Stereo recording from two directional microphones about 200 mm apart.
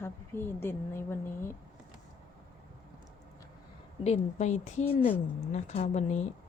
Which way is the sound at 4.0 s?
35° left (ahead or behind).